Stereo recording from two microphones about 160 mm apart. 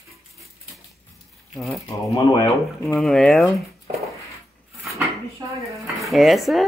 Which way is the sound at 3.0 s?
5° left (ahead or behind).